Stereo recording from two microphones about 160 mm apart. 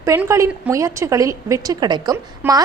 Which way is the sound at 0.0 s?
20° right (ahead or behind).